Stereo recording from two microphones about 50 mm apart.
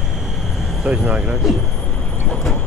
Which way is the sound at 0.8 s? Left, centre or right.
Right.